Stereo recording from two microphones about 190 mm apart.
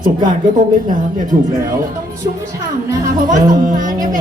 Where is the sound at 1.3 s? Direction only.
20° right (ahead or behind).